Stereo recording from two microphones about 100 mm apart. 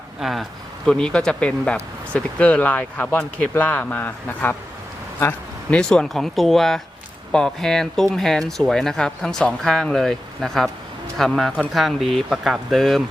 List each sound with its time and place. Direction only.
0.2 s speech: centre (ahead or behind); by 4.5 s 15° left (ahead or behind)
5.7 s speech: 5° left (ahead or behind)